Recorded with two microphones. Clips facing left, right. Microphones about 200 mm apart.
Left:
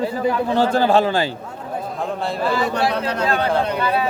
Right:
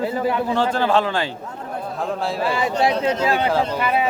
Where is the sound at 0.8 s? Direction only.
40° left (ahead or behind).